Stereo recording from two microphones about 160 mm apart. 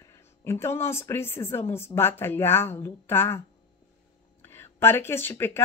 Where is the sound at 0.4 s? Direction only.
15° left (ahead or behind).